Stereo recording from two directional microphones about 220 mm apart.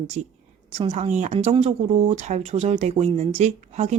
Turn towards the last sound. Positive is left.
turn(degrees=-30)  # may be behind; listen again after turning